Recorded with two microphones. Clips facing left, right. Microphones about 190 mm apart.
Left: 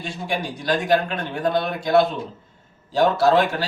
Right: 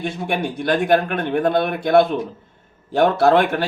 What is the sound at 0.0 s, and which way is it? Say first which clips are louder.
A man's voice: right 4 dB; 55° right (ahead or behind).